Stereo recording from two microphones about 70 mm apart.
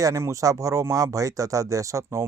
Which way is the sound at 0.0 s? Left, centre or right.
Right.